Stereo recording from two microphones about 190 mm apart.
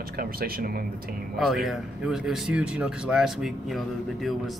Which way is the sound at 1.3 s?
Centre (ahead or behind).